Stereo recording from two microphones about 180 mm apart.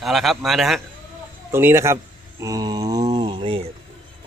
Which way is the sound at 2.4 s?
20° right (ahead or behind).